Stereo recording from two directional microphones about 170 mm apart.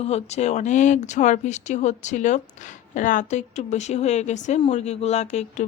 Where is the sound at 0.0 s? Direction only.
40° left (ahead or behind).